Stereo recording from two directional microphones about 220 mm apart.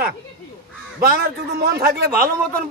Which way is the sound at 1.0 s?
45° right (ahead or behind).